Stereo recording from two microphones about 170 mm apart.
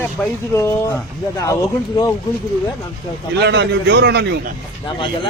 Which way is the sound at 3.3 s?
85° right.